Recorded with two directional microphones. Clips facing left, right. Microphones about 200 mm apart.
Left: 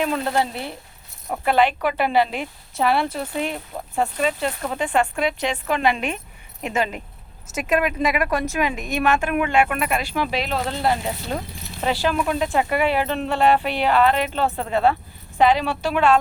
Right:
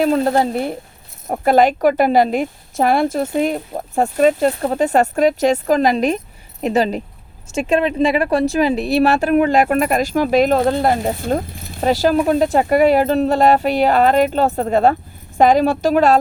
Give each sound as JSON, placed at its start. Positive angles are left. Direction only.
{"t": 0.0, "sound": "speech", "side_deg": -40}